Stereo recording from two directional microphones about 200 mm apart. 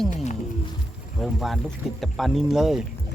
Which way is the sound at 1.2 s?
Centre (ahead or behind).